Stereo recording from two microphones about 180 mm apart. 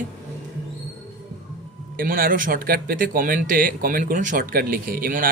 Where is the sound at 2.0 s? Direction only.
55° right (ahead or behind).